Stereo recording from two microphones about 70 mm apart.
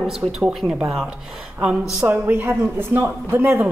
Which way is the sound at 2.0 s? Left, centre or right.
Right.